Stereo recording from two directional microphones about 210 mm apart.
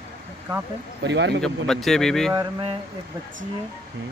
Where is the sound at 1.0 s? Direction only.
55° right (ahead or behind).